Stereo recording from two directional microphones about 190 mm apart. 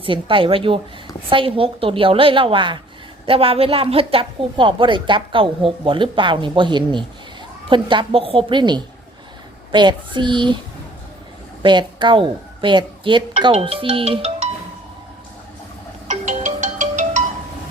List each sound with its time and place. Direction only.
0.0 s a woman's voice: 25° right (ahead or behind)
11.6 s a woman's voice: 25° right (ahead or behind)
16.0 s ringtone: 40° right (ahead or behind)